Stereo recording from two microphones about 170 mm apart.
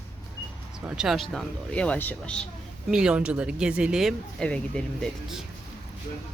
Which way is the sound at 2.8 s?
5° right (ahead or behind).